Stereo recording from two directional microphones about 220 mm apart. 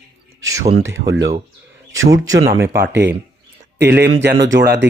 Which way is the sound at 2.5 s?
10° right (ahead or behind).